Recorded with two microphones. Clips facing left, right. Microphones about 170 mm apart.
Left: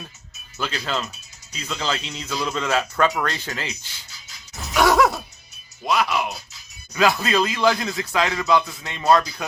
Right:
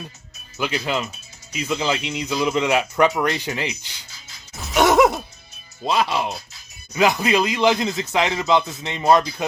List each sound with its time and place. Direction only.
0.6 s speech: 15° right (ahead or behind)
4.7 s music: 20° right (ahead or behind)
5.8 s speech: 25° right (ahead or behind)